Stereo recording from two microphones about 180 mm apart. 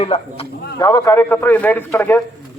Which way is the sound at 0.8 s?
20° left (ahead or behind).